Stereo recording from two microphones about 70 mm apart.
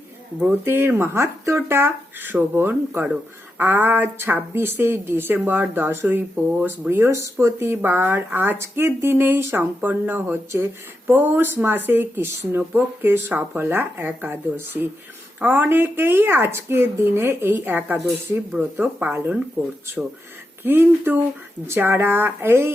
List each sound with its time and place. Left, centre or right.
0.6 s speech: right
6.9 s speech: right
10.5 s speech: right
11.1 s speech: right
20.7 s speech: right